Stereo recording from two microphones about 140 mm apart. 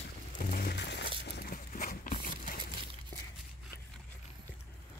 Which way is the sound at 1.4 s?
75° left (ahead or behind).